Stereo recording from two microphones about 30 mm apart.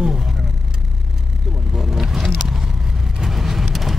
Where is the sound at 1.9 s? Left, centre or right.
Centre.